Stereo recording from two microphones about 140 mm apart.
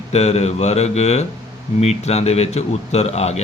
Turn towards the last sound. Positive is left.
turn(degrees=50)  # may be behind; listen again after turning